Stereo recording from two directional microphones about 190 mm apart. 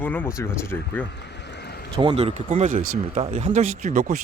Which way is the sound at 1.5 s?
60° left (ahead or behind).